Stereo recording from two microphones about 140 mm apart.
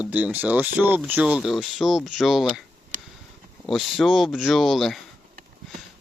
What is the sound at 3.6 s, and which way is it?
Speech, centre (ahead or behind).